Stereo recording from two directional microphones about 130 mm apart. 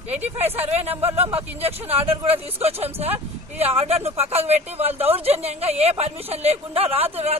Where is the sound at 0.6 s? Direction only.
55° right (ahead or behind).